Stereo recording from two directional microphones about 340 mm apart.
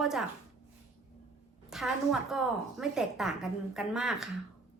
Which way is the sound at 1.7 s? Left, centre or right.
Centre.